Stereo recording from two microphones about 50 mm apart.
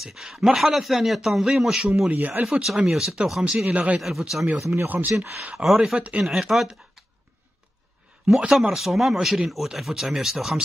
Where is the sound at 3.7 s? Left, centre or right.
Right.